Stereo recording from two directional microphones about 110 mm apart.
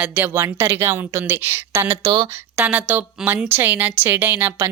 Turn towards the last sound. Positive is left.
turn(degrees=-15)  # may be behind; listen again after turning